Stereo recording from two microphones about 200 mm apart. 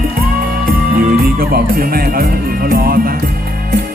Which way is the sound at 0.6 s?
45° right (ahead or behind).